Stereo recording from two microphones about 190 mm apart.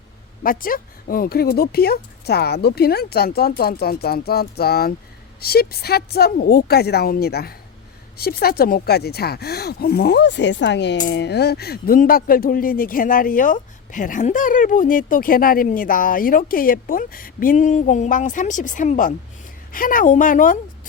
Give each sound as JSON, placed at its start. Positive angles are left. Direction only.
{"t": 0.4, "sound": "speech", "side_deg": 50}